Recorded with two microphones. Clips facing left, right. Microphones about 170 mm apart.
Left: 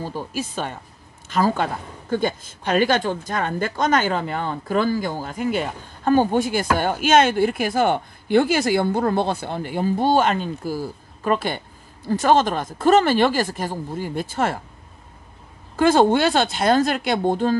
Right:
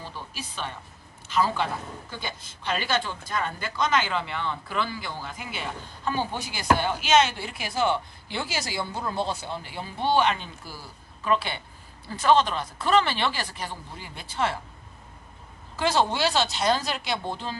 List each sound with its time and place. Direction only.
0.0 s speech: 45° left (ahead or behind)
15.7 s speech: 50° left (ahead or behind)